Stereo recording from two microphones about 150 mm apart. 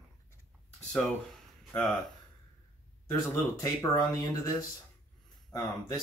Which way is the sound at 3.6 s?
20° left (ahead or behind).